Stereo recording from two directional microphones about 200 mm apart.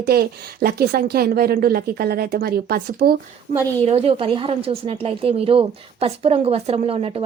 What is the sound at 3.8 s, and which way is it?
Speech, 30° right (ahead or behind).